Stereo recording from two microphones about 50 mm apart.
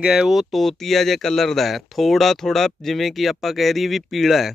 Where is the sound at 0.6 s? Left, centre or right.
Centre.